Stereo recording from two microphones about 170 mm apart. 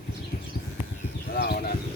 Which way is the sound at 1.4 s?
65° left (ahead or behind).